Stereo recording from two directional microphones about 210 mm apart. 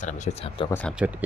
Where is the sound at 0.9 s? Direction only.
5° right (ahead or behind).